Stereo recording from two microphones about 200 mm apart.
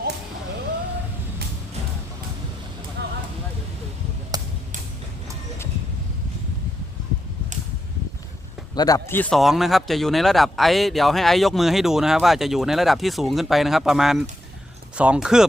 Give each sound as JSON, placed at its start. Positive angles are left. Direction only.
{"t": 4.3, "sound": "a sound", "side_deg": -20}
{"t": 8.7, "sound": "a man's voice", "side_deg": 20}
{"t": 9.3, "sound": "speech", "side_deg": 0}